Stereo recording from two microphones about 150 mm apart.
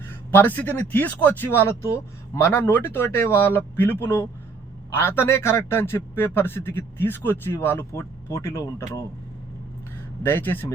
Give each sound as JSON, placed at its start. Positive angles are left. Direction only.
{"t": 0.1, "sound": "a man's voice", "side_deg": 15}
{"t": 10.2, "sound": "a man's voice", "side_deg": 15}